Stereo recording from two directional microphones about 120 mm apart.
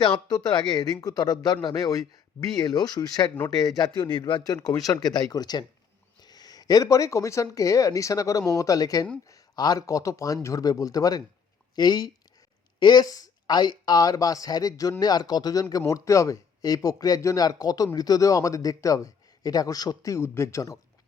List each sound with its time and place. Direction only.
0.0 s speech: 35° left (ahead or behind)